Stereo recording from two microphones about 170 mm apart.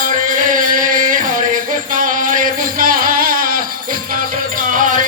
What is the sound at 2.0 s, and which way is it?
Music, 50° right (ahead or behind).